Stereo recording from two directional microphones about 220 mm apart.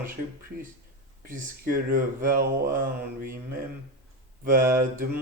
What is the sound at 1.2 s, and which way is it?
Speech, 40° right (ahead or behind).